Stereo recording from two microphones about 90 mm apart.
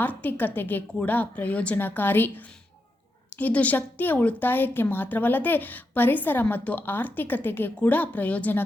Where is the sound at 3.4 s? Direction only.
15° left (ahead or behind).